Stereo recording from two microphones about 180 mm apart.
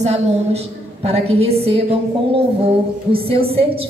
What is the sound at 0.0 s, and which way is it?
A woman's voice, 35° right (ahead or behind).